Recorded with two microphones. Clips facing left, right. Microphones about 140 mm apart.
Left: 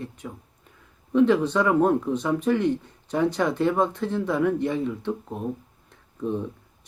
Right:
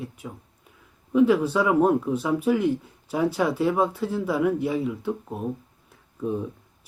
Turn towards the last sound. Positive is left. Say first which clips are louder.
# even
turn(degrees=-5)  # may be behind; listen again after turning